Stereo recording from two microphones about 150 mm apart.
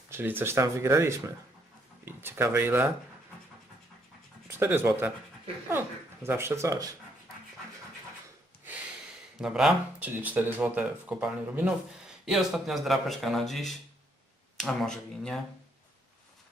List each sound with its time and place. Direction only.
0.1 s speech: 15° right (ahead or behind)
4.4 s speech: 15° right (ahead or behind)
6.2 s speech: 15° right (ahead or behind)
9.4 s speech: 5° right (ahead or behind)